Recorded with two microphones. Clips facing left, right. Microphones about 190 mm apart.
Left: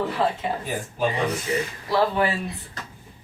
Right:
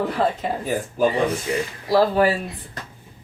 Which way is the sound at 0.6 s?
45° right (ahead or behind).